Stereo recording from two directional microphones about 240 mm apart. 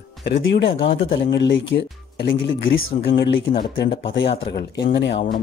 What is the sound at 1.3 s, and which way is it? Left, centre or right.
Speech, left.